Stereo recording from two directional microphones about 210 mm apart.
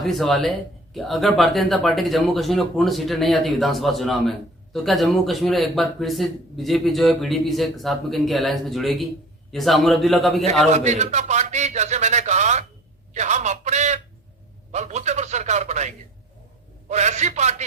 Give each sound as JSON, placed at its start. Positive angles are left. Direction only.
{"t": 0.0, "sound": "speech", "side_deg": 0}
{"t": 10.7, "sound": "a man's voice", "side_deg": -30}
{"t": 16.9, "sound": "a man's voice", "side_deg": -35}